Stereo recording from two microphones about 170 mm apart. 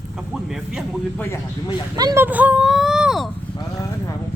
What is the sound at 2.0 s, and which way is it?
Speech, 25° right (ahead or behind).